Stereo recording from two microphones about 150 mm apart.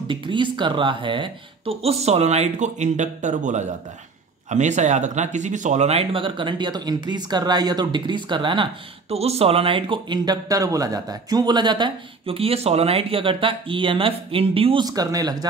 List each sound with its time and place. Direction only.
0.1 s speech: 35° right (ahead or behind)
9.1 s speech: 45° right (ahead or behind)
14.9 s speech: 25° right (ahead or behind)